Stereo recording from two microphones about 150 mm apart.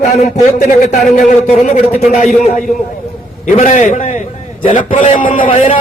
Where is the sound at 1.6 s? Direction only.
50° left (ahead or behind).